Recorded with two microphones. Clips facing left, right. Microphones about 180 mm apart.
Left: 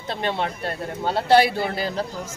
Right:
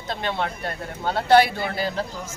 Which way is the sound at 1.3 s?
10° left (ahead or behind).